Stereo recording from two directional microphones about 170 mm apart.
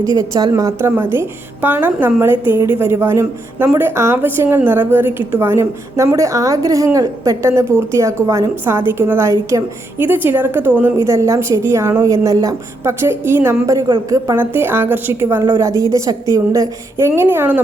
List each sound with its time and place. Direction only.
0.1 s a woman's voice: 25° right (ahead or behind)